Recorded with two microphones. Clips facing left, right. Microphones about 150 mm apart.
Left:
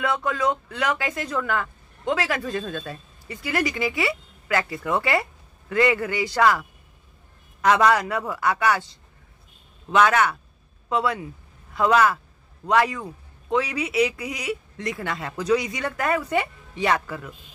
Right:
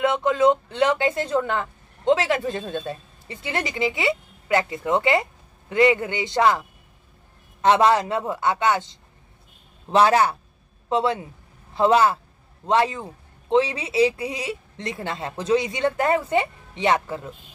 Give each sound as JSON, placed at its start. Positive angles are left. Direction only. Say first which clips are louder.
{"t": 0.0, "sound": "speech", "louder": "right 5 dB", "side_deg": -25}
{"t": 7.6, "sound": "a man's voice", "louder": "right 1 dB", "side_deg": -25}